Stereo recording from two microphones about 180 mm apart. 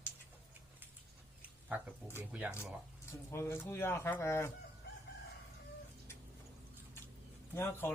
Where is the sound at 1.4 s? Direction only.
10° right (ahead or behind).